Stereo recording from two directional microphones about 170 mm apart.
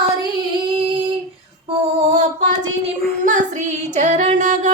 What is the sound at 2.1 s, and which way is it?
Speech, 40° right (ahead or behind).